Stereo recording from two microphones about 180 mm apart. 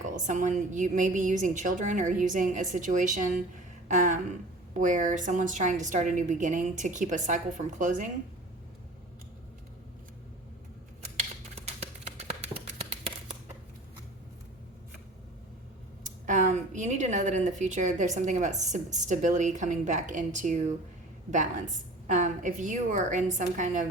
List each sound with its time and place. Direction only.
0.0 s a woman's voice: 45° right (ahead or behind)
11.5 s a sound: 35° right (ahead or behind)
16.0 s speech: 45° right (ahead or behind)
22.0 s a woman's voice: 45° right (ahead or behind)